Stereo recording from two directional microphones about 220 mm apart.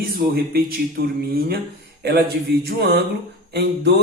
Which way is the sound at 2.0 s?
45° right (ahead or behind).